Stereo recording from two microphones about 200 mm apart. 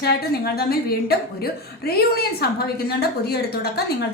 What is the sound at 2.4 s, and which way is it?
A woman's voice, 50° left (ahead or behind).